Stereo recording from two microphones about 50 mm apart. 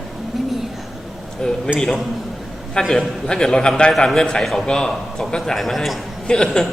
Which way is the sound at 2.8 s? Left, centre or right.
Centre.